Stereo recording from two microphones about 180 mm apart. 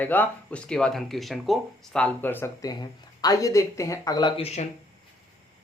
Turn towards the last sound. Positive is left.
turn(degrees=25)  # may be behind; listen again after turning